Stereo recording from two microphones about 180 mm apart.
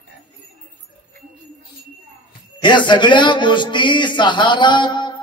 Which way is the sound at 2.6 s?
25° left (ahead or behind).